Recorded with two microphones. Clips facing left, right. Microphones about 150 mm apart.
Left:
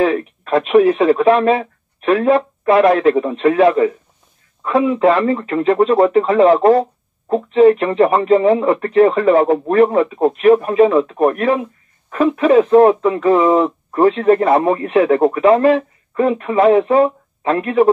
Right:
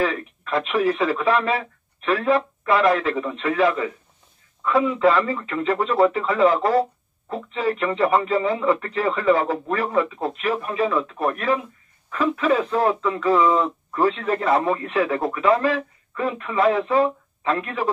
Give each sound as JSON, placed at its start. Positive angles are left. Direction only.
{"t": 0.0, "sound": "speech", "side_deg": 50}